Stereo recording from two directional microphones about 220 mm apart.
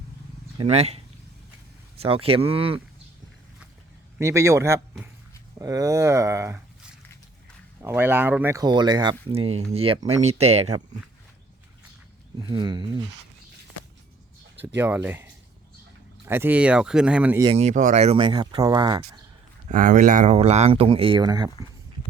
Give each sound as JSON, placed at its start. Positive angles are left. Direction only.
{"t": 0.6, "sound": "speech", "side_deg": -30}
{"t": 4.2, "sound": "speech", "side_deg": -10}
{"t": 7.8, "sound": "speech", "side_deg": -10}
{"t": 12.4, "sound": "speech", "side_deg": -20}
{"t": 14.8, "sound": "speech", "side_deg": -10}
{"t": 17.4, "sound": "speech", "side_deg": -25}
{"t": 19.6, "sound": "speech", "side_deg": -35}